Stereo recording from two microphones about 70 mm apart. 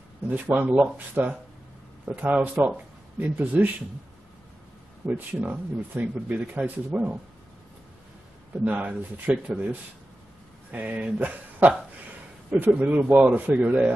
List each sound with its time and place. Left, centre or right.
0.3 s a man's voice: right
5.0 s a man's voice: right
8.6 s a man's voice: right
10.7 s a man's voice: right